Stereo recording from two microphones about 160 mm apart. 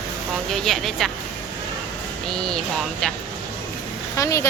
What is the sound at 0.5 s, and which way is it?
Speech, centre (ahead or behind).